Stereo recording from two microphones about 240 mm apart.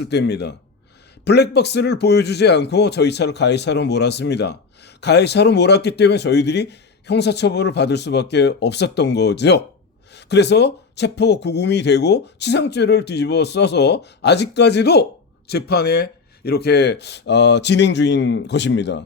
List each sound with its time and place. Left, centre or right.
0.0 s speech: left